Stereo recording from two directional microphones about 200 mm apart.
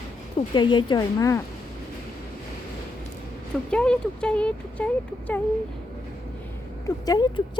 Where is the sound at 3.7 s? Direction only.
5° left (ahead or behind).